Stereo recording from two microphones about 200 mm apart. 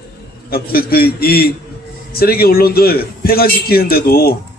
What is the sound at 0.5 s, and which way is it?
A man's voice, 50° left (ahead or behind).